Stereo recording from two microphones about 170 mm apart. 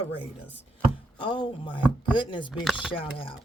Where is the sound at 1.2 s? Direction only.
25° left (ahead or behind).